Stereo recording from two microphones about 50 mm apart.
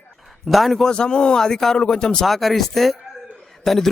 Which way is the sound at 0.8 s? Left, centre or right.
Centre.